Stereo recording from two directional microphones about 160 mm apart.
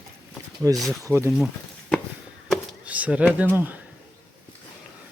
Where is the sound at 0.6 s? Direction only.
20° right (ahead or behind).